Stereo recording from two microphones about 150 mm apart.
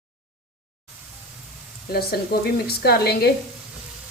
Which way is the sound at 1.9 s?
90° left.